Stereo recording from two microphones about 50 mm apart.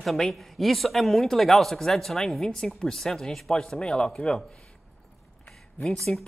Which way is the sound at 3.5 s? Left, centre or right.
Centre.